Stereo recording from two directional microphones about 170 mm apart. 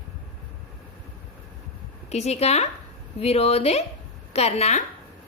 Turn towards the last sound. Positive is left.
turn(degrees=40)  # may be behind; listen again after turning